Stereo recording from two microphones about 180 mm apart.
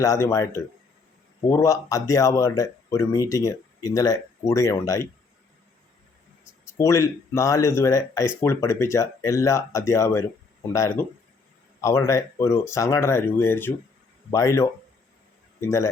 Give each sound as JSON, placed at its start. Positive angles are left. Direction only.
{"t": 0.0, "sound": "speech", "side_deg": 15}
{"t": 6.7, "sound": "speech", "side_deg": 15}